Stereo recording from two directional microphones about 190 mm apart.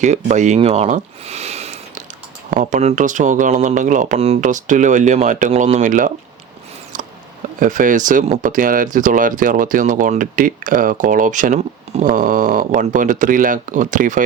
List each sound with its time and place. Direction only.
0.0 s speech: 40° right (ahead or behind)
6.9 s a sound: 45° right (ahead or behind)
7.6 s speech: 45° right (ahead or behind)